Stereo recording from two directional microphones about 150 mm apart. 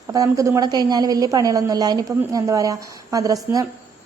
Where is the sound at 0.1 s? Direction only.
20° right (ahead or behind).